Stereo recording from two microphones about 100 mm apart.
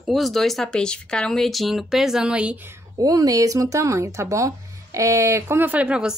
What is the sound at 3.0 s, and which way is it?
Speech, 35° right (ahead or behind).